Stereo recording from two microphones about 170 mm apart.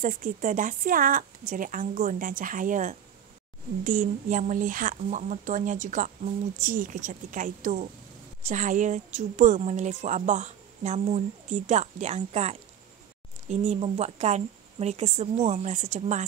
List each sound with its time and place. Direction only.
0.0 s a woman's voice: 50° right (ahead or behind)